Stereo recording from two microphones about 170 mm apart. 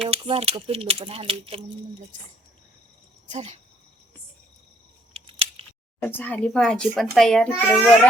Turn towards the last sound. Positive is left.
turn(degrees=5)  # may be behind; listen again after turning